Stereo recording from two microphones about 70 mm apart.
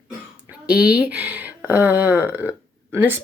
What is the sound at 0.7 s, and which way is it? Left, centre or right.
Speech, centre.